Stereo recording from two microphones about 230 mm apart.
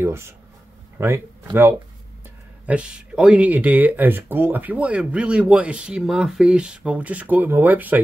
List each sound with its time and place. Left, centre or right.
0.0 s speech: centre